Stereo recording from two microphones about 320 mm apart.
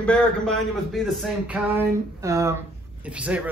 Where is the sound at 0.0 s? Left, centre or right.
Centre.